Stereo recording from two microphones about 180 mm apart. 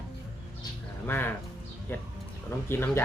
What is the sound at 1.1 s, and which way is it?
Speech, 10° left (ahead or behind).